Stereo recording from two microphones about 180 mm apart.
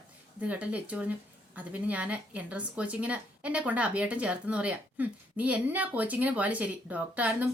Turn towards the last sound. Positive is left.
turn(degrees=-10)  # may be behind; listen again after turning